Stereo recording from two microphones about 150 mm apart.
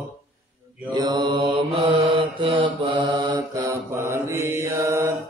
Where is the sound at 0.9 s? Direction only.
30° right (ahead or behind).